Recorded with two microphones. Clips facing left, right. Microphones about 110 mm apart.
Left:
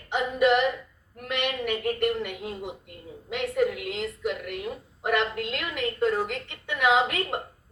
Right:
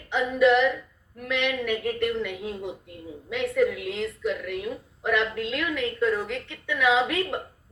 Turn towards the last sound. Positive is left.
turn(degrees=60)  # may be behind; listen again after turning